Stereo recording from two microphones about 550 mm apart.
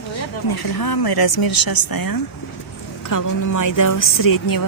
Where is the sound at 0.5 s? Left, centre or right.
Left.